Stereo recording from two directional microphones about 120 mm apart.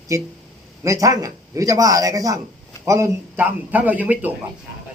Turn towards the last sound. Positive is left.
turn(degrees=-15)  # may be behind; listen again after turning